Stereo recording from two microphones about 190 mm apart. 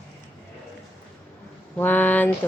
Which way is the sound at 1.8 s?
10° left (ahead or behind).